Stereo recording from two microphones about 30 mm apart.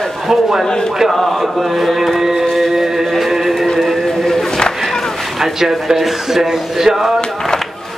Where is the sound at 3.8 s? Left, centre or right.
Centre.